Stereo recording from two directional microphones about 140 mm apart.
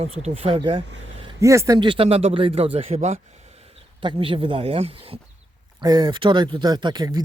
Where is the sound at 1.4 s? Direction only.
20° right (ahead or behind).